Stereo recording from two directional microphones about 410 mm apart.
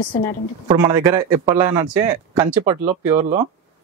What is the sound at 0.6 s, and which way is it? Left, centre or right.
Speech, centre.